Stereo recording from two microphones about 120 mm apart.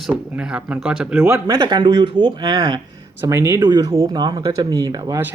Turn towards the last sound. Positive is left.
turn(degrees=-30)  # may be behind; listen again after turning